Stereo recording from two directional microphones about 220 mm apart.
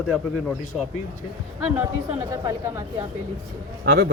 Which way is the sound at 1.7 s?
15° right (ahead or behind).